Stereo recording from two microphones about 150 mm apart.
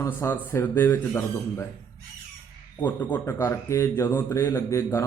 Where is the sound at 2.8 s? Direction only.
10° left (ahead or behind).